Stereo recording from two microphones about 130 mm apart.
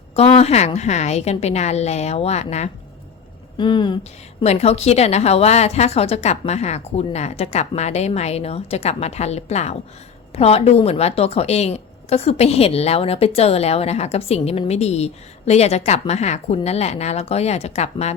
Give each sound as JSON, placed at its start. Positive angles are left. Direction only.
{"t": 0.2, "sound": "a woman's voice", "side_deg": 50}
{"t": 3.6, "sound": "speech", "side_deg": 35}
{"t": 4.4, "sound": "a woman's voice", "side_deg": 55}